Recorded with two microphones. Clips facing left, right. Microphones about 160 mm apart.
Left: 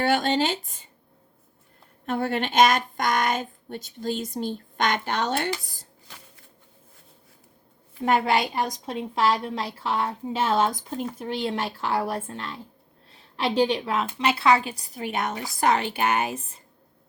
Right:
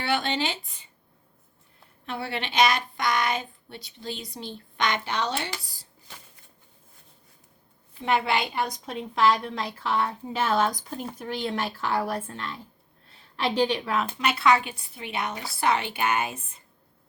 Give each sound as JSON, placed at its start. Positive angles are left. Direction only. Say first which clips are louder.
{"t": 0.0, "sound": "speech", "louder": "left 5 dB", "side_deg": 45}
{"t": 2.0, "sound": "speech", "louder": "left 6 dB", "side_deg": 45}
{"t": 8.0, "sound": "a woman's voice", "louder": "left 3 dB", "side_deg": 40}